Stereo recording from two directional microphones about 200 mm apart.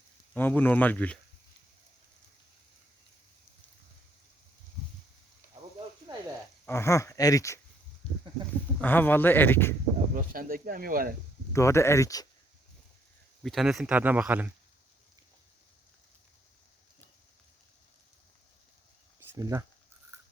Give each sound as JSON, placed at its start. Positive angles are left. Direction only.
{"t": 0.3, "sound": "speech", "side_deg": 10}
{"t": 6.1, "sound": "a sound", "side_deg": -20}
{"t": 6.7, "sound": "speech", "side_deg": 15}
{"t": 8.0, "sound": "a sound", "side_deg": 30}
{"t": 8.8, "sound": "speech", "side_deg": 10}
{"t": 10.2, "sound": "speech", "side_deg": -45}
{"t": 11.5, "sound": "speech", "side_deg": 15}
{"t": 13.4, "sound": "speech", "side_deg": 0}
{"t": 19.4, "sound": "speech", "side_deg": -15}